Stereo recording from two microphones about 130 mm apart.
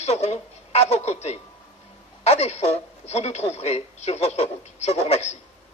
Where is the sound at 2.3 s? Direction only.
55° left (ahead or behind).